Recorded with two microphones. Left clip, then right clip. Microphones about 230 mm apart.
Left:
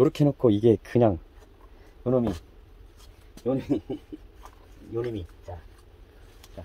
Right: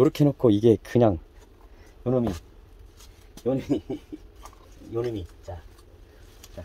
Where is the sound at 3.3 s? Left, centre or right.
Centre.